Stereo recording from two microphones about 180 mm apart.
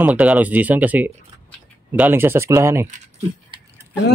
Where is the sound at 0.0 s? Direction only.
10° right (ahead or behind).